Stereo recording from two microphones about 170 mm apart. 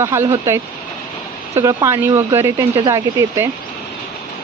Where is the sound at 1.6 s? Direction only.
20° right (ahead or behind).